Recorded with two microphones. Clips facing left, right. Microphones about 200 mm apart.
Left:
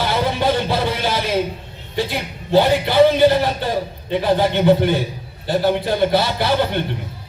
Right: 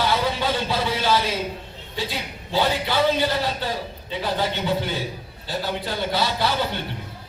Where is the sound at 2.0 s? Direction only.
55° left (ahead or behind).